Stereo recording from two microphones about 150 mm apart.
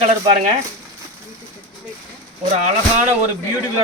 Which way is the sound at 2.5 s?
50° right (ahead or behind).